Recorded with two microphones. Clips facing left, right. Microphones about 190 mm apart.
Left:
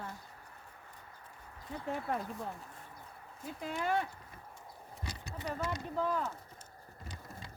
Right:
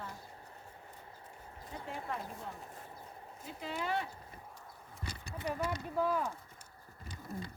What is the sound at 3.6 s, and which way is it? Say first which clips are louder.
Speech: left 3 dB; 50° left (ahead or behind).